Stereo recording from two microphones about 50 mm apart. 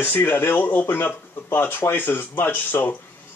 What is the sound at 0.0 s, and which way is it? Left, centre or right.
Speech, left.